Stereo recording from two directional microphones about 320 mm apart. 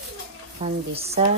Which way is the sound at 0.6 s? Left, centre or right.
Centre.